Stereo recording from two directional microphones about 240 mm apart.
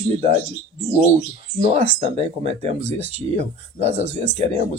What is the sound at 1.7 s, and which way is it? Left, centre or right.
Speech, right.